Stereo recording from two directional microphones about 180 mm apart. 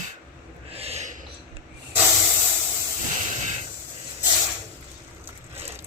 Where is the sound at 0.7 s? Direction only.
35° right (ahead or behind).